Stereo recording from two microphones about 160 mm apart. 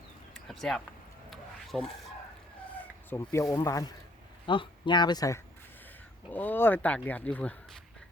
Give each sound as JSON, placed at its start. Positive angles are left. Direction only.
{"t": 0.3, "sound": "a sound", "side_deg": 0}
{"t": 3.1, "sound": "speech", "side_deg": 15}
{"t": 4.4, "sound": "speech", "side_deg": 30}
{"t": 6.3, "sound": "speech", "side_deg": 10}